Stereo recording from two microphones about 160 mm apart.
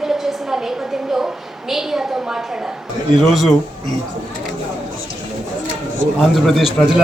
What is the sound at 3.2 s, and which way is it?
Speech, centre (ahead or behind).